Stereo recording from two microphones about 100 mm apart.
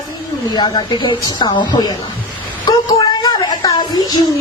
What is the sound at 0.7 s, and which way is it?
A woman's voice, 45° left (ahead or behind).